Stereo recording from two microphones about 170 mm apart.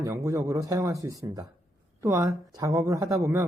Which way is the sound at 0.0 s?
20° right (ahead or behind).